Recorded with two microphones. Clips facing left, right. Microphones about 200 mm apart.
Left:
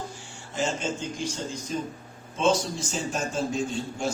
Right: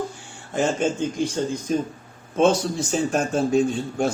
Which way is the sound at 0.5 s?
55° right (ahead or behind).